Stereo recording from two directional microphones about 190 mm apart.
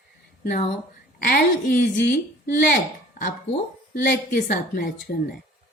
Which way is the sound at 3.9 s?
50° left (ahead or behind).